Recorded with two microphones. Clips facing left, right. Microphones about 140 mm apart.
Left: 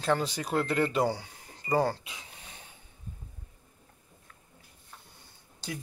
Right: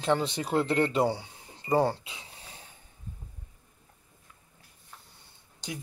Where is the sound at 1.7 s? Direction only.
25° right (ahead or behind).